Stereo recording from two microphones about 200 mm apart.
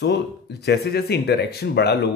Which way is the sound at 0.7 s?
55° left (ahead or behind).